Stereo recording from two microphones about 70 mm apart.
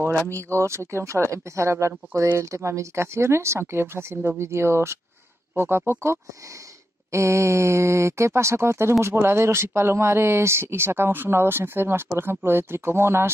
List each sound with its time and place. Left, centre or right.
0.3 s speech: right